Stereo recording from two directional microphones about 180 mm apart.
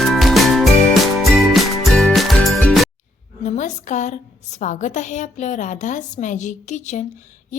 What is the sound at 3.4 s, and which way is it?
A woman's voice, 40° left (ahead or behind).